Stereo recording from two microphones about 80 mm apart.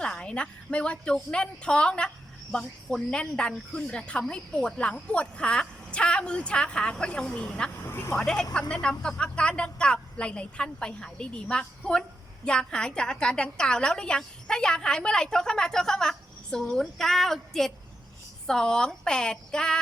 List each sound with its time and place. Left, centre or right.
0.0 s speech: centre
7.8 s speech: left
8.1 s speech: centre
16.6 s female singing: centre
18.4 s speech: centre